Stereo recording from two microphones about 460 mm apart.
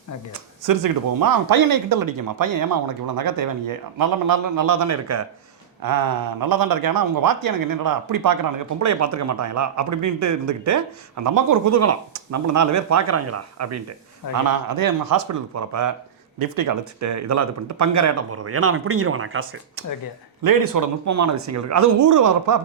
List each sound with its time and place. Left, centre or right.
0.3 s speech: right
5.8 s speech: right
20.4 s speech: right